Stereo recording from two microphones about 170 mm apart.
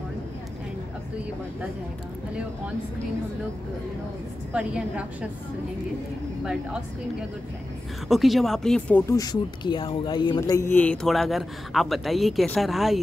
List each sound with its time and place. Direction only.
4.5 s a woman's voice: 5° right (ahead or behind)
8.1 s a man's voice: centre (ahead or behind)
9.1 s a man's voice: 20° left (ahead or behind); by 13.0 s centre (ahead or behind)